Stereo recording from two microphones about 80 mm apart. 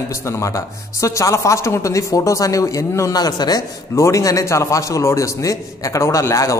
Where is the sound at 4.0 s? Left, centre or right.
Left.